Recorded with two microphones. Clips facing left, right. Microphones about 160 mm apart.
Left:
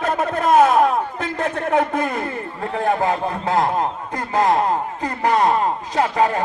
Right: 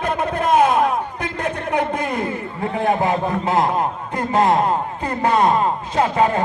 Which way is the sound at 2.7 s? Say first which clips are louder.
Even; 20° right (ahead or behind).